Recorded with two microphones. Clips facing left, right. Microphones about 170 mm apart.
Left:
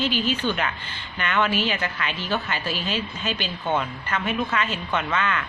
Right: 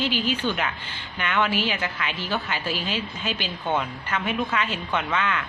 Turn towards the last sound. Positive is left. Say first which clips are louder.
# left 1 dB
turn(degrees=-10)  # may be behind; listen again after turning